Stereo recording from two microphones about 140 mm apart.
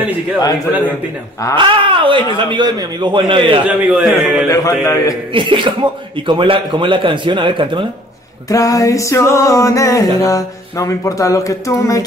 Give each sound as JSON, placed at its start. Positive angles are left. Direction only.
{"t": 1.6, "sound": "speech", "side_deg": -35}
{"t": 3.6, "sound": "a man's voice", "side_deg": -5}
{"t": 4.5, "sound": "speech", "side_deg": 25}
{"t": 5.3, "sound": "speech", "side_deg": -35}
{"t": 8.5, "sound": "speech", "side_deg": 25}